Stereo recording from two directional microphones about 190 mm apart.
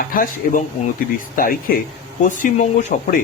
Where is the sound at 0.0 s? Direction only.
50° left (ahead or behind).